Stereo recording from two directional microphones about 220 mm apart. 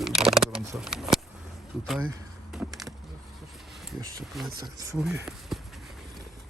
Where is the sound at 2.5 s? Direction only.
Centre (ahead or behind).